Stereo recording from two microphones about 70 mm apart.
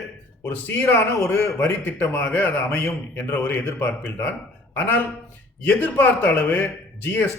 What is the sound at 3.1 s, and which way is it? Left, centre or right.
A man's voice, left.